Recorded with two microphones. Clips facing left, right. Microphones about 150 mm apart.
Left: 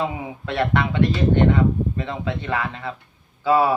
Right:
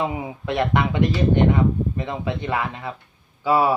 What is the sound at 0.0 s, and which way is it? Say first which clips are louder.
Speech: right 1 dB; 15° right (ahead or behind).